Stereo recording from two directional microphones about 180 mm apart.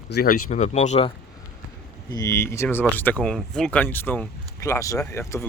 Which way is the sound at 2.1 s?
20° left (ahead or behind).